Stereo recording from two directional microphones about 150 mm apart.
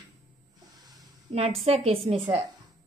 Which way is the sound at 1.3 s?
45° right (ahead or behind).